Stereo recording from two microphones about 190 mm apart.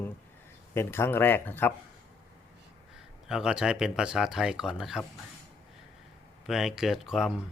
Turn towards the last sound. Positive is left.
turn(degrees=0)  # may be behind; listen again after turning